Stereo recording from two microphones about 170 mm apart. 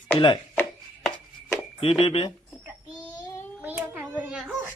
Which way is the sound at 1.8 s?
35° left (ahead or behind).